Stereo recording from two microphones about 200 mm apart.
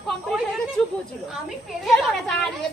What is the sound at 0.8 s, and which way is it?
A woman's voice, 5° left (ahead or behind).